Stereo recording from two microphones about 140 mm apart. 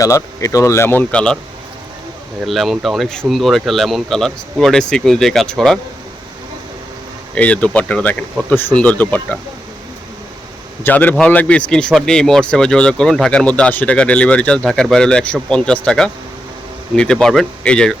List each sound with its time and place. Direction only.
0.0 s speech: 20° left (ahead or behind); by 1.4 s 5° left (ahead or behind)
2.5 s speech: centre (ahead or behind)
7.3 s speech: 10° left (ahead or behind)
10.8 s speech: 15° left (ahead or behind)